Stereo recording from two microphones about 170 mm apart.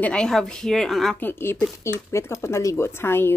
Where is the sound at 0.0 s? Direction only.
5° left (ahead or behind).